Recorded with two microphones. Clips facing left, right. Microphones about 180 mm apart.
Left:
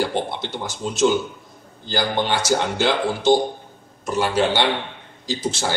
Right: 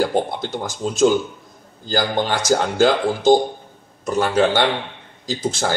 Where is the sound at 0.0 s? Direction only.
45° right (ahead or behind).